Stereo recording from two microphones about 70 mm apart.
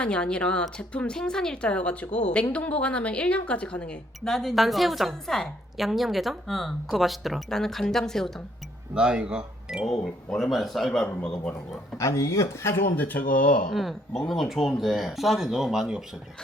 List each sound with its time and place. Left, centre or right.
0.0 s speech: centre
9.0 s speech: centre
9.8 s speech: centre
11.0 s speech: centre
11.9 s speech: left
12.7 s speech: left
13.7 s speech: centre